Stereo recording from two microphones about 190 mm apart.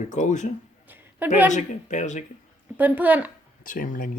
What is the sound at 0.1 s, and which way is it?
Speech, 40° left (ahead or behind).